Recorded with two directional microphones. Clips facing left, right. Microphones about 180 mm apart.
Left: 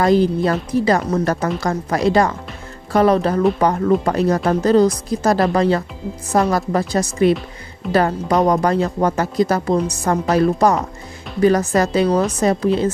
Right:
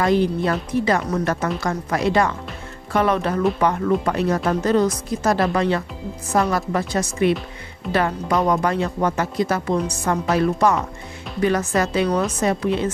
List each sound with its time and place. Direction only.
0.0 s speech: 35° left (ahead or behind)